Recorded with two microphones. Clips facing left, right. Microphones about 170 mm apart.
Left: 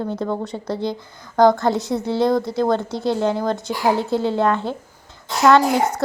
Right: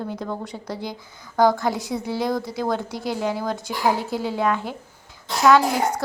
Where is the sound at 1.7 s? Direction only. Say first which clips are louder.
Left 5 dB; 20° left (ahead or behind).